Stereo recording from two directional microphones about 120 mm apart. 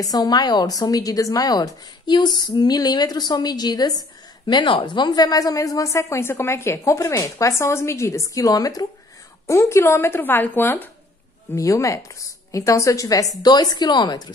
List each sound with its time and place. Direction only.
0.0 s a woman's voice: 30° left (ahead or behind)